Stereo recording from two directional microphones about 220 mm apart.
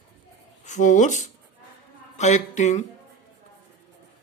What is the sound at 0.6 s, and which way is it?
Speech, 35° left (ahead or behind).